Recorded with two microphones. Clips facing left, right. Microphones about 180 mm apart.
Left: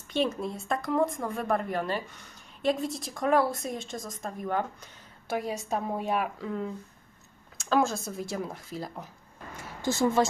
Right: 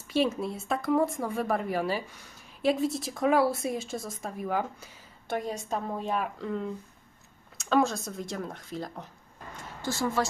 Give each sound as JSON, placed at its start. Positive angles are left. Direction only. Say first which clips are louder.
{"t": 0.1, "sound": "speech", "louder": "right 2 dB", "side_deg": -5}
{"t": 5.3, "sound": "a woman's voice", "louder": "left 1 dB", "side_deg": 5}
{"t": 9.8, "sound": "speech", "louder": "left 4 dB", "side_deg": 20}